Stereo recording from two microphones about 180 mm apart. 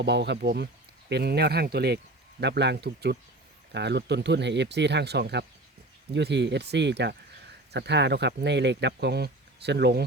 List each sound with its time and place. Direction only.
0.0 s speech: 70° right (ahead or behind)